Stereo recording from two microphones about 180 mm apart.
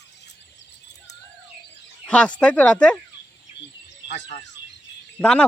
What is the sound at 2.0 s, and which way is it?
Speech, 5° left (ahead or behind).